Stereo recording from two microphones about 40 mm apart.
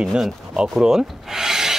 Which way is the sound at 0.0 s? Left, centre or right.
Centre.